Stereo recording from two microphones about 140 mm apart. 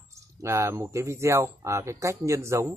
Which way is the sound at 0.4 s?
20° right (ahead or behind).